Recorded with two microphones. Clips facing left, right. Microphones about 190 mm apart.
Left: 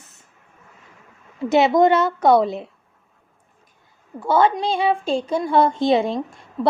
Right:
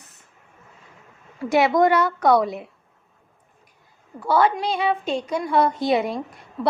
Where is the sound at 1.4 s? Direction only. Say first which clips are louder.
Left 2 dB; 20° left (ahead or behind).